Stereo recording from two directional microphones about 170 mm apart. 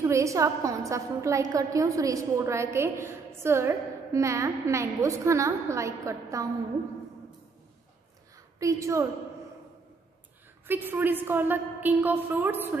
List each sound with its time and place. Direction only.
0.0 s a woman's voice: 15° right (ahead or behind)
8.5 s a woman's voice: 20° right (ahead or behind)
10.7 s a woman's voice: 10° right (ahead or behind)